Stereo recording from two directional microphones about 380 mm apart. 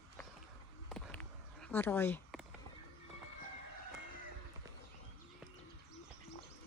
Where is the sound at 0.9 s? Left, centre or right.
Centre.